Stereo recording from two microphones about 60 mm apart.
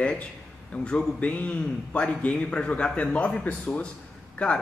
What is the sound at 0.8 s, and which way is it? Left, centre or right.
A man's voice, left.